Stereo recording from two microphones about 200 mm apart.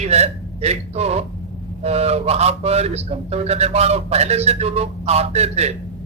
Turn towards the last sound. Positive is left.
turn(degrees=-30)  # may be behind; listen again after turning